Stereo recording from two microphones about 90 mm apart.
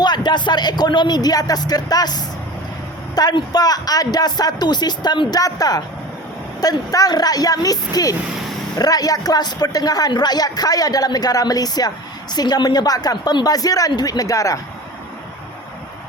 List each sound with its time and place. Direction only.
0.0 s a woman's voice: 55° left (ahead or behind)
5.4 s a woman's voice: 40° left (ahead or behind)